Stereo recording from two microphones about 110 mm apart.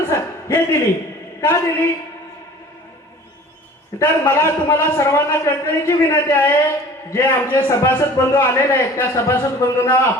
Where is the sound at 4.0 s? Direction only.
20° left (ahead or behind).